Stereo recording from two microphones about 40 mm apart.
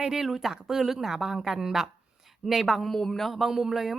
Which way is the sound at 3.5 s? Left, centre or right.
Centre.